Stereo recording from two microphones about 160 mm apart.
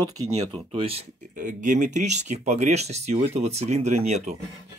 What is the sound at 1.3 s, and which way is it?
Speech, 55° right (ahead or behind).